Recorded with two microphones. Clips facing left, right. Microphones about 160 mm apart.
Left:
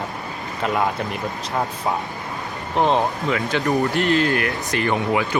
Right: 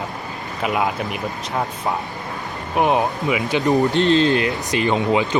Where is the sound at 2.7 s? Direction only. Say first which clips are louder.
Right 1 dB; 15° right (ahead or behind).